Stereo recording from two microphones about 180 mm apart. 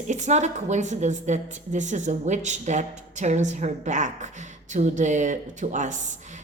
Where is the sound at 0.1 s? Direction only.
40° right (ahead or behind).